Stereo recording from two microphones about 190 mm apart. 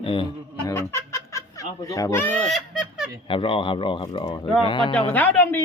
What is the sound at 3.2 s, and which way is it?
Speech, 25° left (ahead or behind).